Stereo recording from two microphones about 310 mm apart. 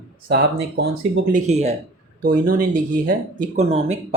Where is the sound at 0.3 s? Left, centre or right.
Right.